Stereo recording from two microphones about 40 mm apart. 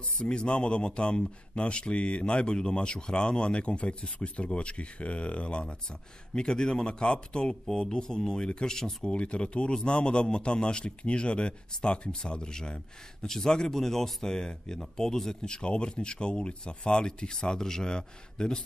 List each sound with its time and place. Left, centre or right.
0.0 s speech: left
9.1 s speech: left